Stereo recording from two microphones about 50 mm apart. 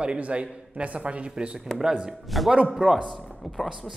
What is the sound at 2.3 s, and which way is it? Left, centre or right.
Speech, centre.